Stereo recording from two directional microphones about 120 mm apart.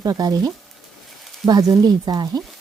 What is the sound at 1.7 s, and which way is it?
Speech, 30° right (ahead or behind).